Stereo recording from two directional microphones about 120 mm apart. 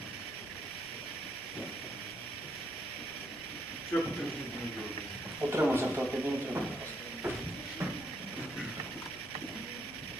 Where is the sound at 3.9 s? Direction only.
15° left (ahead or behind).